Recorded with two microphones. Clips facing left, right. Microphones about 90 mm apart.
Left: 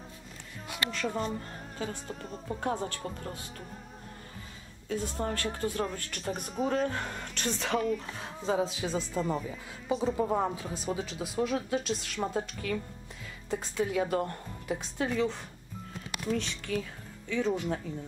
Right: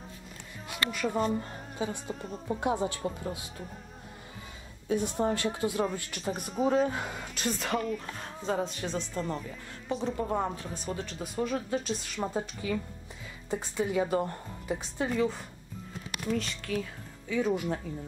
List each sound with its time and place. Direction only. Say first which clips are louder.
0.8 s speech: right 4 dB; 10° right (ahead or behind)
4.8 s speech: right 5 dB; 20° right (ahead or behind)